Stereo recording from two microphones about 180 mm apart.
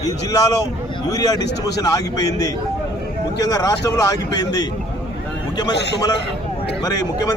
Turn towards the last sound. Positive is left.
turn(degrees=20)  # may be behind; listen again after turning